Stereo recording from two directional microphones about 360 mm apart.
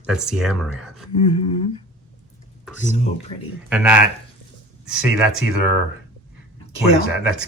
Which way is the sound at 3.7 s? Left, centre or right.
Centre.